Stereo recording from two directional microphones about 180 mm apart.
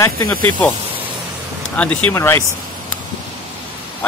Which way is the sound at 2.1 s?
15° left (ahead or behind).